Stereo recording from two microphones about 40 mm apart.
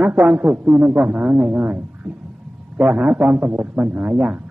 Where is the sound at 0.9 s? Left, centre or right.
Right.